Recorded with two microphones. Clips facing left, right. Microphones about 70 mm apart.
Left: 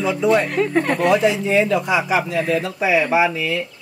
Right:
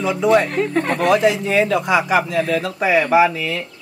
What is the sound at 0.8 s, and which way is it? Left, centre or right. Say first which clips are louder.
Speech: even; right.